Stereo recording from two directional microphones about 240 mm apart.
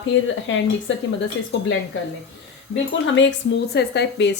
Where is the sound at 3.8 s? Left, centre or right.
Left.